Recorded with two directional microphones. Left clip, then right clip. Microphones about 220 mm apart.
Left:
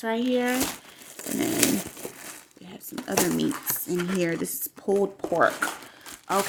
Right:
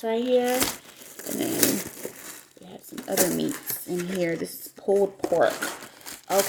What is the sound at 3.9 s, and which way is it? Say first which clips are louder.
Speech: left 2 dB; 20° left (ahead or behind).